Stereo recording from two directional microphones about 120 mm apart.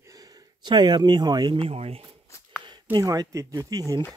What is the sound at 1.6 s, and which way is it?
Speech, 55° right (ahead or behind).